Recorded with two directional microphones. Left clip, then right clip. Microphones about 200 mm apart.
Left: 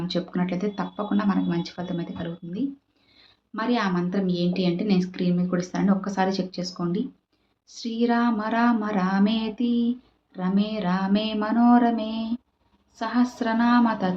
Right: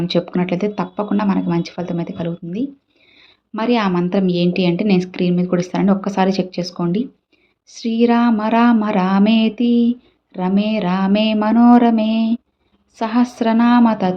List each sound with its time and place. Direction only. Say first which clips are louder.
0.1 s a woman's voice: right 9 dB; 40° right (ahead or behind)